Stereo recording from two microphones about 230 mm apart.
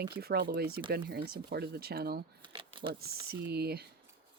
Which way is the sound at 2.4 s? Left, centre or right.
Right.